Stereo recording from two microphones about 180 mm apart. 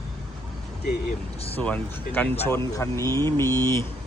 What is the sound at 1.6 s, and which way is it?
Speech, 10° left (ahead or behind).